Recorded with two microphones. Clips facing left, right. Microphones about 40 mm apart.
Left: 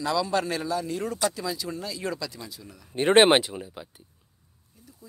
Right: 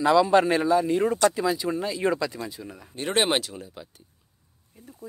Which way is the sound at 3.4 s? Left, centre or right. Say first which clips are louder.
Left 2 dB; centre.